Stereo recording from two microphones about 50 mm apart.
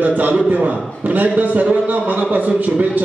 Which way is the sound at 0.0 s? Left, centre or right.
Right.